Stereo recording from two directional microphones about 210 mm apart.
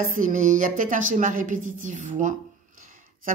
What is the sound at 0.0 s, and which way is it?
A woman's voice, 40° right (ahead or behind).